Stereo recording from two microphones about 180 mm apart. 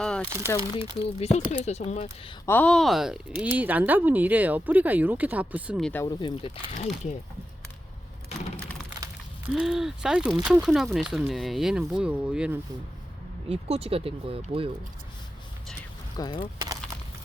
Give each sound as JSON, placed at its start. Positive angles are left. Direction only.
{"t": 0.4, "sound": "speech", "side_deg": 20}
{"t": 0.8, "sound": "speech", "side_deg": 35}
{"t": 2.5, "sound": "speech", "side_deg": 5}
{"t": 6.1, "sound": "speech", "side_deg": 25}
{"t": 6.7, "sound": "speech", "side_deg": 40}
{"t": 9.5, "sound": "speech", "side_deg": -5}
{"t": 13.5, "sound": "speech", "side_deg": -35}
{"t": 16.1, "sound": "speech", "side_deg": 20}